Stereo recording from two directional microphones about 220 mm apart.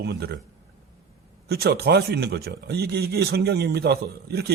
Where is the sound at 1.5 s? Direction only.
45° right (ahead or behind).